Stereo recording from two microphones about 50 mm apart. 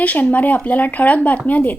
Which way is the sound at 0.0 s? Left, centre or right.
Left.